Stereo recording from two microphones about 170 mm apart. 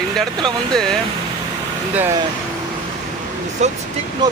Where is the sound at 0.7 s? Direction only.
5° left (ahead or behind).